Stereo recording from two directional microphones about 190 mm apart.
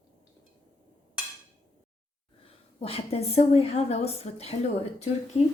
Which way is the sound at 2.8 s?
30° left (ahead or behind).